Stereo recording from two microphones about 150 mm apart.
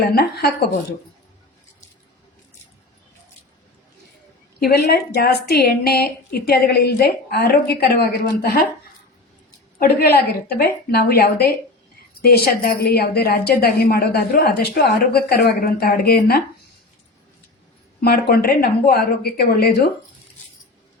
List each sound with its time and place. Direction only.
0.1 s a woman's voice: 90° left
4.6 s a woman's voice: 90° left
9.7 s a woman's voice: 85° left
18.0 s a woman's voice: 90° left